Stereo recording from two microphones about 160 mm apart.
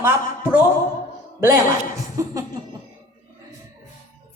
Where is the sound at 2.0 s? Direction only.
20° right (ahead or behind).